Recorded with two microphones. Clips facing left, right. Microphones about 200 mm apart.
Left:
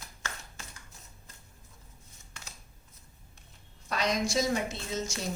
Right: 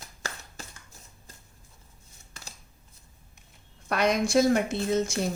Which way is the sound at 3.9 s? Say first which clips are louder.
Right 5 dB; 60° right (ahead or behind).